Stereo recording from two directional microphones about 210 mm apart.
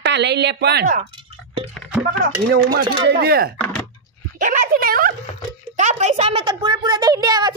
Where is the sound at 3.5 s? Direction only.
5° left (ahead or behind).